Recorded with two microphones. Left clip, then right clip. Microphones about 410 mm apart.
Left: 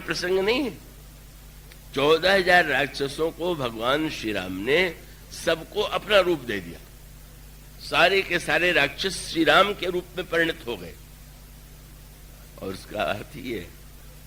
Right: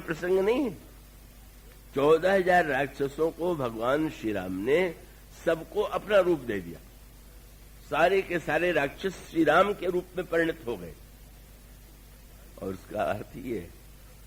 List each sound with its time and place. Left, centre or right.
0.0 s a man's voice: right
1.9 s a man's voice: right
7.9 s a man's voice: right
12.5 s a man's voice: right